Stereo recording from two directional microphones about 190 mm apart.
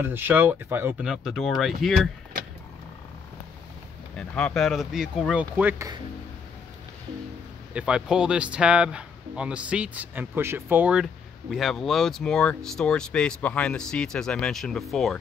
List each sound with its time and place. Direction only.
0.0 s speech: 10° right (ahead or behind)
4.2 s speech: 5° left (ahead or behind)
7.7 s speech: 5° right (ahead or behind)